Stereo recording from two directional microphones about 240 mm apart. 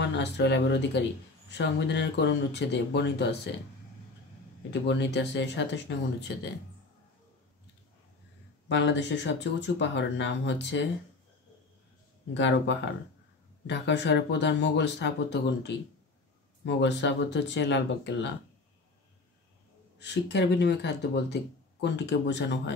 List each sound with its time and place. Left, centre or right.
0.0 s speech: left
4.8 s speech: left
8.6 s speech: left
12.4 s speech: left
20.0 s speech: left